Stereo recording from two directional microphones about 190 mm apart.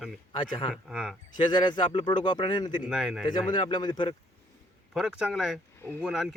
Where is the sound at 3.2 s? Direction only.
25° left (ahead or behind).